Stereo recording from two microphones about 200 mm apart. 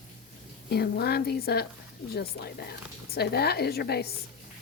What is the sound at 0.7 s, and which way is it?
Speech, 55° left (ahead or behind).